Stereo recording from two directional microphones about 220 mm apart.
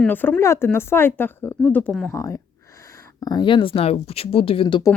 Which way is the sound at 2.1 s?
15° left (ahead or behind).